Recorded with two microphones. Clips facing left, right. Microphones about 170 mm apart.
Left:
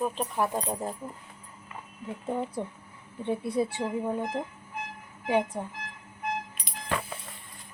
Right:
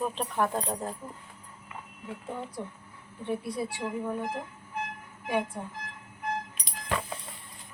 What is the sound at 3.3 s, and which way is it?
Speech, 25° left (ahead or behind).